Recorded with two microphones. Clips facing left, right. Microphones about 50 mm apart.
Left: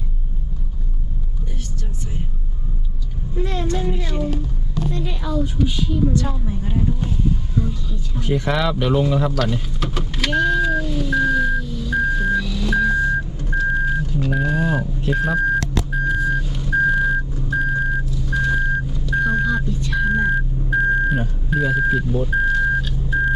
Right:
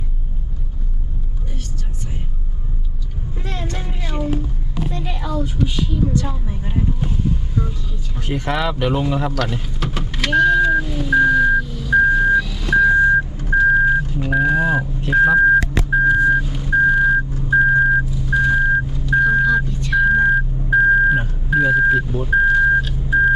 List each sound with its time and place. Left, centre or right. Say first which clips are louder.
3.8 s a sound: left 1 dB; centre
4.9 s vehicle: even; centre
8.4 s speech: right 1 dB; centre
9.3 s vehicle: left 1 dB; centre